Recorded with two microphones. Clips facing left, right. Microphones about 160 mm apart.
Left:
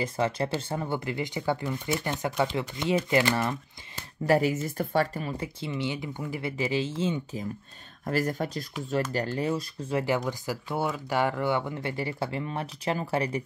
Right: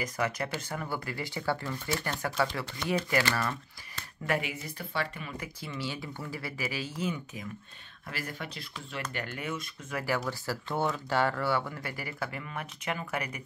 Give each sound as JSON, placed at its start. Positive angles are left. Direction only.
{"t": 0.0, "sound": "speech", "side_deg": 30}
{"t": 4.3, "sound": "speech", "side_deg": 40}
{"t": 5.6, "sound": "speech", "side_deg": 20}
{"t": 8.0, "sound": "speech", "side_deg": 45}